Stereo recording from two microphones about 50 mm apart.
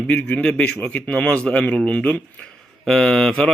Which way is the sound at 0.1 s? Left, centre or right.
Left.